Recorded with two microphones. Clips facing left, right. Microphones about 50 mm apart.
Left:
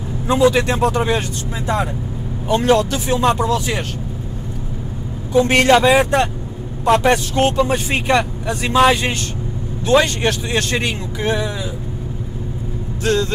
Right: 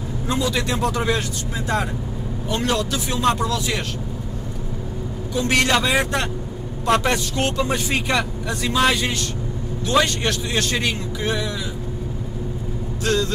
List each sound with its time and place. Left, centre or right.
0.3 s a man's voice: left
2.7 s a man's voice: left
5.3 s a man's voice: left
13.0 s a man's voice: left